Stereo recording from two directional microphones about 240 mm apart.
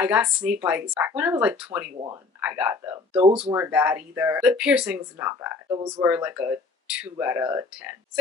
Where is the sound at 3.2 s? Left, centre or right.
Right.